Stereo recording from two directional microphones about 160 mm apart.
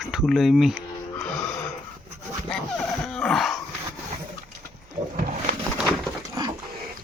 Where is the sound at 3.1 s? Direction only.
5° left (ahead or behind).